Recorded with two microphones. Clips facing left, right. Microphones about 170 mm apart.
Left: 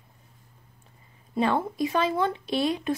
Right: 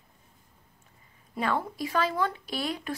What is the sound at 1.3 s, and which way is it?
Speech, 25° left (ahead or behind).